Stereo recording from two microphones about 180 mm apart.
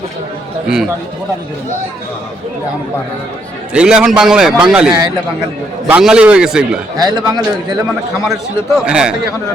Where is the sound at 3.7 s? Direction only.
5° right (ahead or behind).